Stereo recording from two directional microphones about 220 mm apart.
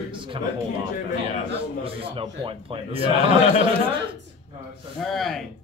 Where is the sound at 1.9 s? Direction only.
25° right (ahead or behind).